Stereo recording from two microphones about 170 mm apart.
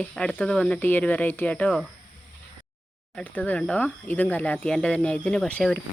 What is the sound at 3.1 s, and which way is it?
Speech, 10° left (ahead or behind).